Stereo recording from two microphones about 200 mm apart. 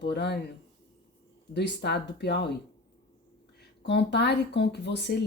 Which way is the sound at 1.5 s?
60° left (ahead or behind).